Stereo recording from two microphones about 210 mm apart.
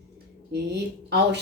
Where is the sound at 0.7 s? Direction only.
55° right (ahead or behind).